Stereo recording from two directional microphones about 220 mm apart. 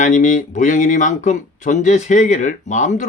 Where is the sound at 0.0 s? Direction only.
35° left (ahead or behind).